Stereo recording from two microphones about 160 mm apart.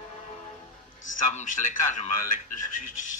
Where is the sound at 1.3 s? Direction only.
50° left (ahead or behind).